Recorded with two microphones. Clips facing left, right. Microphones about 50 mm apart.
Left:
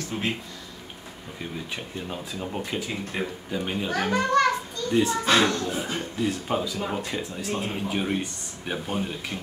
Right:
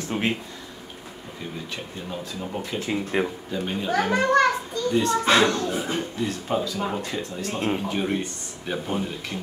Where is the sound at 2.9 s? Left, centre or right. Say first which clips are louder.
Right 6 dB; right.